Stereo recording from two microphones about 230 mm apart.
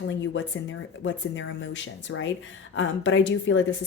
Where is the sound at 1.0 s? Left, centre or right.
Left.